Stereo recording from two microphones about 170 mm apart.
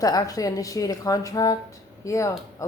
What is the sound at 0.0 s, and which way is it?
A woman's voice, 20° left (ahead or behind).